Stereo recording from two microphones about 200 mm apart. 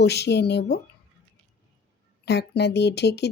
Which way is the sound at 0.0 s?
55° left (ahead or behind).